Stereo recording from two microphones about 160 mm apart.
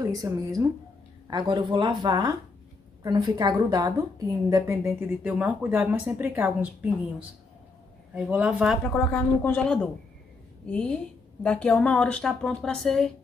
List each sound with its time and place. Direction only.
0.0 s a woman's voice: 20° right (ahead or behind); by 8.7 s 5° right (ahead or behind)
8.8 s a woman's voice: 10° left (ahead or behind)